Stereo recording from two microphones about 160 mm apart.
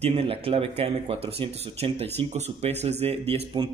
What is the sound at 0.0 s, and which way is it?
Speech, 40° right (ahead or behind).